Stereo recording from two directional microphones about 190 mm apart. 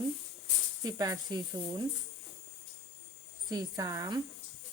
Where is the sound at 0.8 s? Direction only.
20° right (ahead or behind).